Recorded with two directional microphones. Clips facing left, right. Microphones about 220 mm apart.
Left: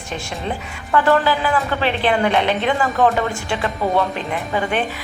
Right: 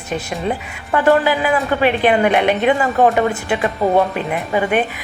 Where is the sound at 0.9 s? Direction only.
15° right (ahead or behind).